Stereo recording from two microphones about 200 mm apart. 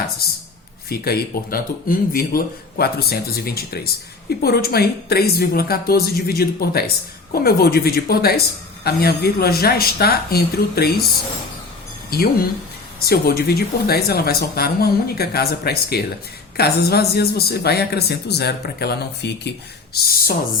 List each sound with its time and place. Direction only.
0.9 s speech: 50° left (ahead or behind)
12.1 s speech: 50° left (ahead or behind)